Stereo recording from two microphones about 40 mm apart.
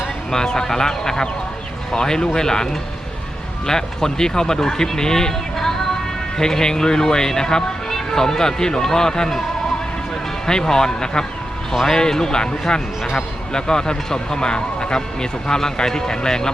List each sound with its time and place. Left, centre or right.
0.3 s speech: centre
3.7 s speech: centre
10.4 s speech: centre
11.7 s speech: centre